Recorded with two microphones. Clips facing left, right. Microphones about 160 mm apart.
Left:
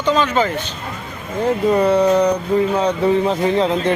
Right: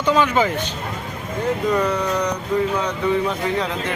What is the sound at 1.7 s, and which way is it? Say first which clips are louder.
Speech: left 7 dB; 30° left (ahead or behind).